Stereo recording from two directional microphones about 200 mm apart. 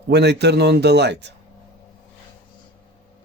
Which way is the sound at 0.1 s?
55° right (ahead or behind).